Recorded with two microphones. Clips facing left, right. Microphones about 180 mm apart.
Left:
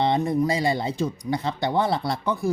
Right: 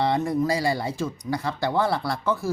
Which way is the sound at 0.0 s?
20° left (ahead or behind).